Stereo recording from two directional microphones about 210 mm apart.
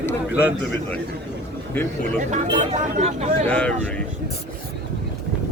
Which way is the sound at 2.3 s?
35° right (ahead or behind).